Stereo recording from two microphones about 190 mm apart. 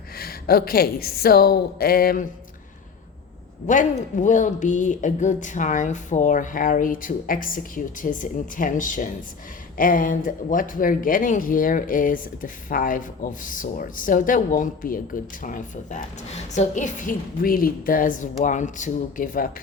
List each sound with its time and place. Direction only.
0.2 s speech: 50° left (ahead or behind)
3.7 s speech: 40° left (ahead or behind)